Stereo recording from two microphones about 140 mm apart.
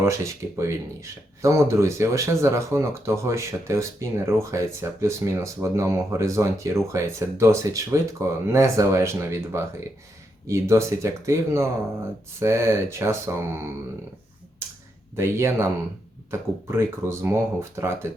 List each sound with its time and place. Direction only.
0.0 s speech: 20° right (ahead or behind)
15.1 s speech: 20° right (ahead or behind)